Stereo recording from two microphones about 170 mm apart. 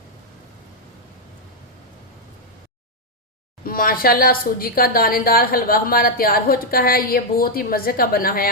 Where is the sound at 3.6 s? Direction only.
60° left (ahead or behind).